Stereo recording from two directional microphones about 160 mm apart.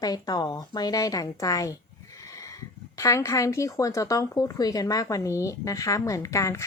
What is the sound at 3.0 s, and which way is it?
A woman's voice, 20° left (ahead or behind).